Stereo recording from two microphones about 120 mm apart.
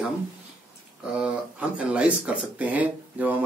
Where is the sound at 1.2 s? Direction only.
10° right (ahead or behind).